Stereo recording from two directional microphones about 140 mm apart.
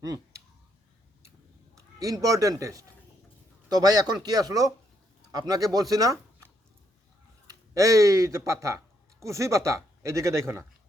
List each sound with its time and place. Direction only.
1.7 s a man's voice: 25° right (ahead or behind)